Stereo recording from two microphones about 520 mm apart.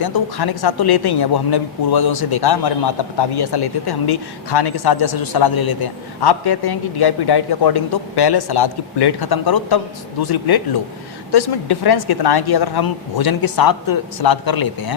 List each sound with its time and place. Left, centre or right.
0.0 s speech: left